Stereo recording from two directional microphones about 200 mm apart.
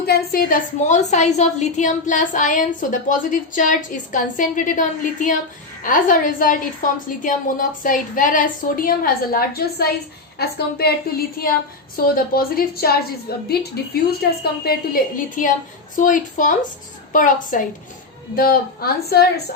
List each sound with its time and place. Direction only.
0.0 s a woman's voice: 50° left (ahead or behind)
11.9 s a woman's voice: 45° left (ahead or behind)